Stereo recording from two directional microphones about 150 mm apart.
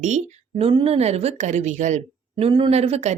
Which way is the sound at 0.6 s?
40° right (ahead or behind).